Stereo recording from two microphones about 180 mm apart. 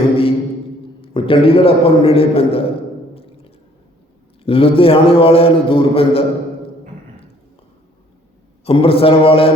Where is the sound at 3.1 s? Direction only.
35° left (ahead or behind).